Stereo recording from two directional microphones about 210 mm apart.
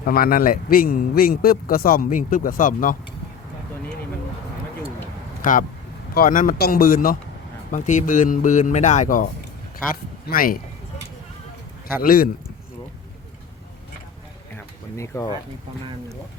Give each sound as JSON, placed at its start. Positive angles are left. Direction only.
{"t": 0.0, "sound": "a man's voice", "side_deg": 45}
{"t": 5.4, "sound": "a man's voice", "side_deg": 40}
{"t": 11.9, "sound": "a man's voice", "side_deg": 45}
{"t": 14.5, "sound": "a sound", "side_deg": 15}